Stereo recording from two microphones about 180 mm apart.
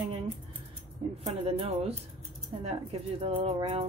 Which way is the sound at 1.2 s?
30° right (ahead or behind).